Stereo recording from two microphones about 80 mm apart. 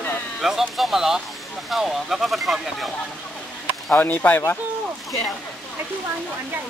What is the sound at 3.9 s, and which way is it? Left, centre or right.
Speech, left.